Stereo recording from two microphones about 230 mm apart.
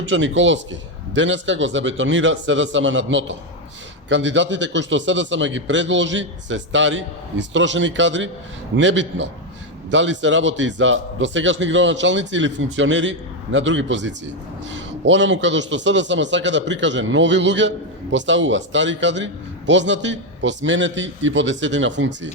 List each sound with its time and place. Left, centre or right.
0.0 s a man's voice: right